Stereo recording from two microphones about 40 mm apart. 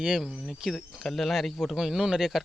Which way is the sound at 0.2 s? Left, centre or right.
Centre.